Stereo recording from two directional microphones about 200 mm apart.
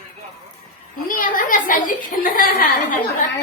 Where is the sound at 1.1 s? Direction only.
40° left (ahead or behind).